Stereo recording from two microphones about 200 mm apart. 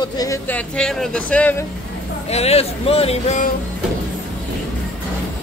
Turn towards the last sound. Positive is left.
turn(degrees=35)  # may be behind; listen again after turning